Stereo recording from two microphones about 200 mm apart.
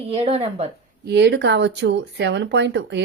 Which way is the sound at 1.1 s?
60° right (ahead or behind).